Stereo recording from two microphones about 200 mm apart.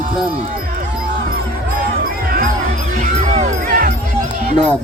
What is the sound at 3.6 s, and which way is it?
Music, 45° right (ahead or behind).